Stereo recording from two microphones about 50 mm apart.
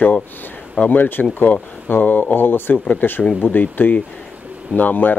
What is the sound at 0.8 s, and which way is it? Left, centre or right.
Speech, left.